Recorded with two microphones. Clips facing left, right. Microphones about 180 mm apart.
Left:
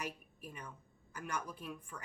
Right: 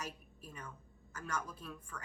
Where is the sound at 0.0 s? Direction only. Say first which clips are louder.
Left 2 dB; 15° left (ahead or behind).